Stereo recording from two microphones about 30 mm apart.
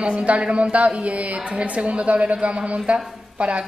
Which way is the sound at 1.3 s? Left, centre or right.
Right.